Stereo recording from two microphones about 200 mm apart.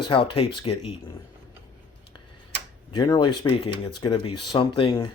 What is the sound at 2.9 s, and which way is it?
Speech, 20° left (ahead or behind).